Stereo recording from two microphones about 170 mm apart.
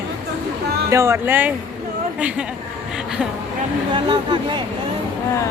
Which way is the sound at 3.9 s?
25° right (ahead or behind).